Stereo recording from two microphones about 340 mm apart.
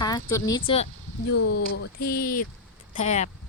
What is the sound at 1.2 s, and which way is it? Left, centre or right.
Speech, left.